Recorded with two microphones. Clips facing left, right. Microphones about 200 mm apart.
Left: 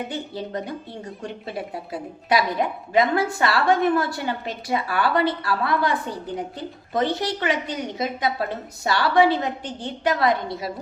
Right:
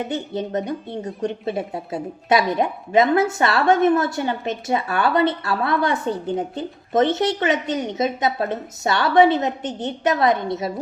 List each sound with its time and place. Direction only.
0.1 s speech: 20° right (ahead or behind)